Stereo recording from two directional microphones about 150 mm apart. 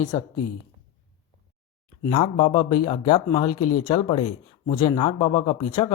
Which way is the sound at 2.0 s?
40° left (ahead or behind).